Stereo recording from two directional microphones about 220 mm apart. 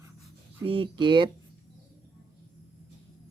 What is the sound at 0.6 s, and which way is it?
Speech, 25° right (ahead or behind).